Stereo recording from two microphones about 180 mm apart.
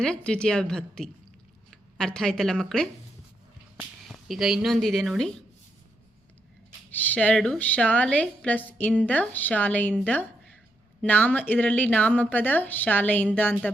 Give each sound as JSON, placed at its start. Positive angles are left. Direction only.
{"t": 0.0, "sound": "a woman's voice", "side_deg": 5}
{"t": 4.1, "sound": "speech", "side_deg": 0}
{"t": 6.9, "sound": "a woman's voice", "side_deg": 10}